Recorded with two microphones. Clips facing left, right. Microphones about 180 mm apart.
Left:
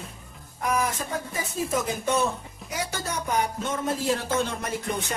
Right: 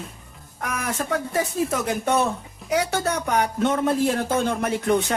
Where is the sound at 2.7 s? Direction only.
65° right (ahead or behind).